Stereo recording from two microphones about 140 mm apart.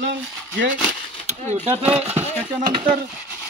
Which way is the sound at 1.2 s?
55° right (ahead or behind).